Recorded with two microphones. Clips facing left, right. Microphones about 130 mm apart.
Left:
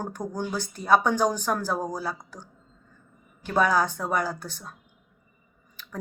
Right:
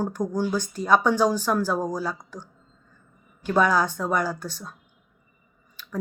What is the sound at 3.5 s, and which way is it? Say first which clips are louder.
Speech: right 2 dB; 35° left (ahead or behind).